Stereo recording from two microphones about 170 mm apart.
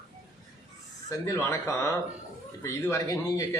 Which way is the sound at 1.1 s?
15° left (ahead or behind).